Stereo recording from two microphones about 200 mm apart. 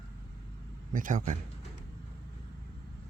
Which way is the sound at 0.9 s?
40° right (ahead or behind).